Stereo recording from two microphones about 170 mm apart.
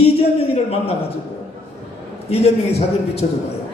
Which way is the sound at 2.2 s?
35° left (ahead or behind).